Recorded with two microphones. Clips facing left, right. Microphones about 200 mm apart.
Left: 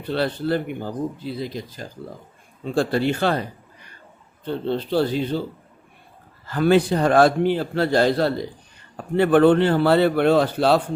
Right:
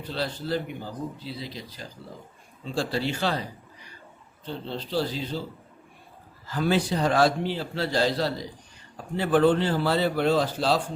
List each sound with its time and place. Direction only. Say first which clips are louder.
0.0 s a man's voice: left 8 dB; 60° left (ahead or behind)
4.4 s a man's voice: left 9 dB; 60° left (ahead or behind)
6.4 s a man's voice: left 7 dB; 60° left (ahead or behind)